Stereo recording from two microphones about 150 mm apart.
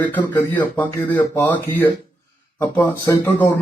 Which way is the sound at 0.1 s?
10° left (ahead or behind).